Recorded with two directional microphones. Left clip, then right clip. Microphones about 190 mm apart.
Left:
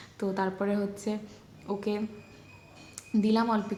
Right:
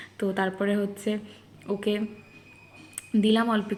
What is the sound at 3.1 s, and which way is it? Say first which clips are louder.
Speech: right 3 dB; 10° right (ahead or behind).